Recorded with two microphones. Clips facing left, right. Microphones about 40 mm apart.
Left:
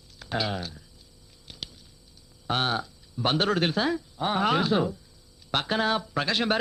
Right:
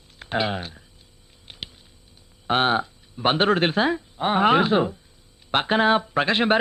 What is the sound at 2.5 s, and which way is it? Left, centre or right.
Speech, right.